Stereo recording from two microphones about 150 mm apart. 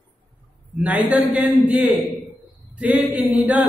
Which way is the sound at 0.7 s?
10° right (ahead or behind).